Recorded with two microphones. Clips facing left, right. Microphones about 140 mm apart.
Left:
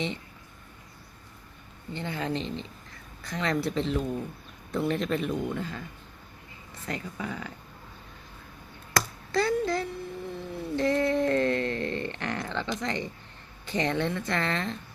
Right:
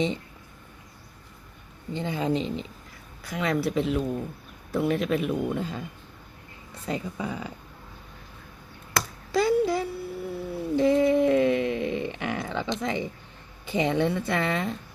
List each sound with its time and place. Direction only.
1.9 s speech: 15° right (ahead or behind)
6.8 s speech: 15° right (ahead or behind)
9.3 s a sound: 10° right (ahead or behind)
12.8 s speech: 10° right (ahead or behind)